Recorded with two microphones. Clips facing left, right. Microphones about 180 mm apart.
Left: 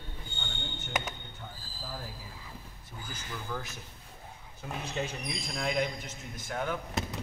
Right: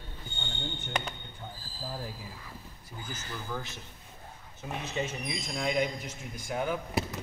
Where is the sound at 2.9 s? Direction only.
5° right (ahead or behind).